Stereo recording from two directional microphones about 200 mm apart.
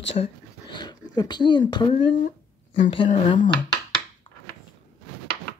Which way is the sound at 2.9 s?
25° left (ahead or behind).